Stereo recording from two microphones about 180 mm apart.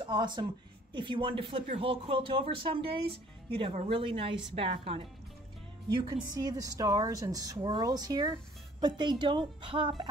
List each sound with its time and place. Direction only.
0.0 s a woman's voice: 25° right (ahead or behind)